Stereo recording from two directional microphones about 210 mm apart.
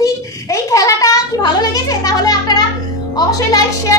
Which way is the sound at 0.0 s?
15° left (ahead or behind).